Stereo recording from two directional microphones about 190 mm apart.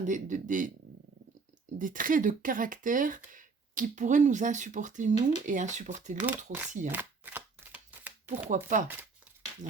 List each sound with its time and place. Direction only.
0.0 s speech: 40° right (ahead or behind)
1.8 s speech: 45° right (ahead or behind)
6.2 s speech: 10° right (ahead or behind)
6.9 s shuffling cards: 10° right (ahead or behind)
8.4 s speech: 45° right (ahead or behind)